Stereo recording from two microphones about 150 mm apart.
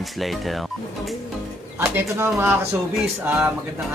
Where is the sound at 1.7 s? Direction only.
15° right (ahead or behind).